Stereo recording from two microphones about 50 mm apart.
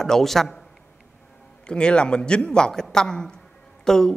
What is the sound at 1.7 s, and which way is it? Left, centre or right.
A woman's voice, centre.